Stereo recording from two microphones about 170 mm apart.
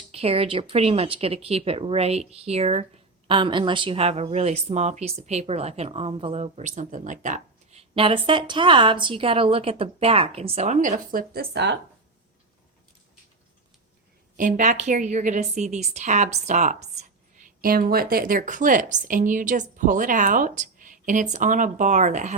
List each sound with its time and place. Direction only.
0.1 s a woman's voice: 35° right (ahead or behind); by 11.8 s 85° right
14.3 s a woman's voice: 50° right (ahead or behind)